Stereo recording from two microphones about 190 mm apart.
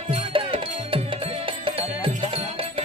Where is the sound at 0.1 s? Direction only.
30° right (ahead or behind).